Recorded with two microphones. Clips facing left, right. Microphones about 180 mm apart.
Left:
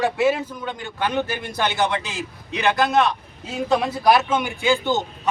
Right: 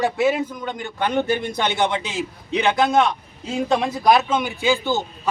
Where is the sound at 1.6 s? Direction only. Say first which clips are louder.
Even; 20° right (ahead or behind).